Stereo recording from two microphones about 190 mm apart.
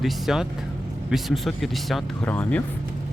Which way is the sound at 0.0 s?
Centre (ahead or behind).